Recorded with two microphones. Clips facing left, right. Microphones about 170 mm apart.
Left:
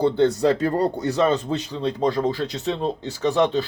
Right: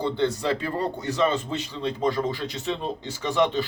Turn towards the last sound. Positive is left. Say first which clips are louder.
# left 3 dB
turn(degrees=40)  # may be behind; listen again after turning